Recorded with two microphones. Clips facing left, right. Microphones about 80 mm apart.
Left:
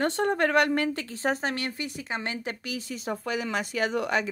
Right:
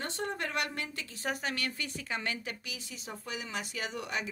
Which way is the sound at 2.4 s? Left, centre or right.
Left.